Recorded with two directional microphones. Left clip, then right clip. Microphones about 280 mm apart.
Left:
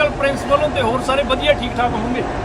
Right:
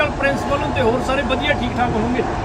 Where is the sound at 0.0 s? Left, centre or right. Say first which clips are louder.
Left 1 dB; centre.